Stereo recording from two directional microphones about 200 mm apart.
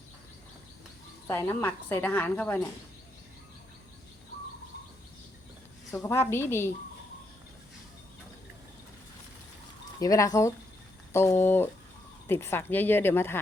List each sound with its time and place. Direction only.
1.3 s speech: 10° left (ahead or behind)
5.9 s speech: 15° left (ahead or behind)
10.0 s speech: 15° left (ahead or behind)